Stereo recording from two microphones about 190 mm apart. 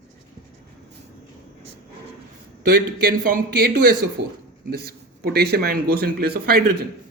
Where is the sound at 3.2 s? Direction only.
50° right (ahead or behind).